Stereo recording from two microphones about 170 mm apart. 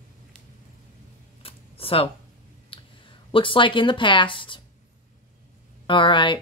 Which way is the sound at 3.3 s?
30° left (ahead or behind).